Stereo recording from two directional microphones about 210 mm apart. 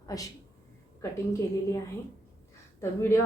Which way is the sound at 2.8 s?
10° left (ahead or behind).